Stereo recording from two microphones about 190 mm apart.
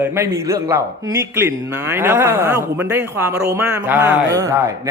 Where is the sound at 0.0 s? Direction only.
15° right (ahead or behind).